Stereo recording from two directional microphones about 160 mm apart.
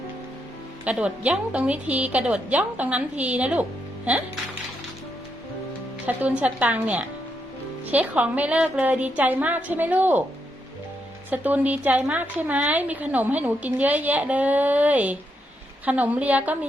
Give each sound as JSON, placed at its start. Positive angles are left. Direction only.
{"t": 0.9, "sound": "a woman's voice", "side_deg": -10}
{"t": 6.1, "sound": "a woman's voice", "side_deg": -10}
{"t": 11.3, "sound": "a woman's voice", "side_deg": -10}